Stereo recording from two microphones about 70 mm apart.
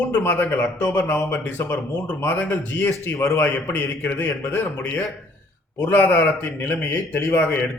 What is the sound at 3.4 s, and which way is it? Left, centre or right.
A man's voice, left.